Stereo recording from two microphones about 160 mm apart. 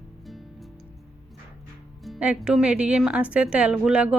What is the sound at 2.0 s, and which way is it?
Speech, 5° right (ahead or behind).